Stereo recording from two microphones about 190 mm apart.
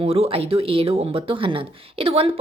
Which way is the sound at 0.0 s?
30° right (ahead or behind).